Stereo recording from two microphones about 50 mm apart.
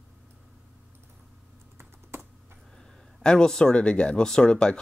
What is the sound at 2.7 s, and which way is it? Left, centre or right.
Speech, centre.